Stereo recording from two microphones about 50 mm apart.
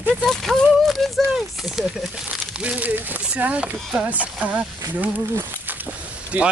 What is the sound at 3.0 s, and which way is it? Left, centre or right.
Speech, right.